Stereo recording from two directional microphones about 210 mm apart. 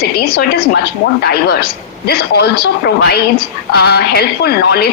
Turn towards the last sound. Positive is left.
turn(degrees=50)  # may be behind; listen again after turning